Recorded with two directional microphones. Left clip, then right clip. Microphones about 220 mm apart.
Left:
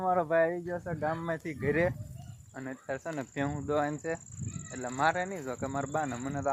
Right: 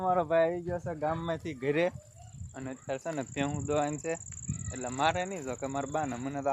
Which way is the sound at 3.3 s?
Centre (ahead or behind).